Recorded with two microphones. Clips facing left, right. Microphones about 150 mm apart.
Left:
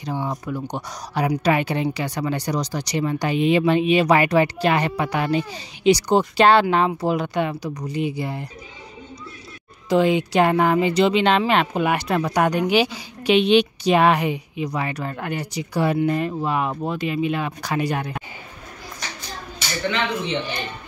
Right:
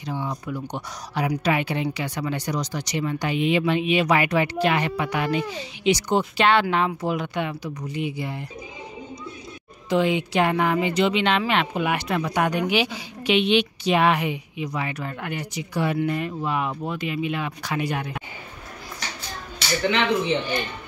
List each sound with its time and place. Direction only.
0.0 s speech: 40° left (ahead or behind)
9.8 s speech: 40° left (ahead or behind)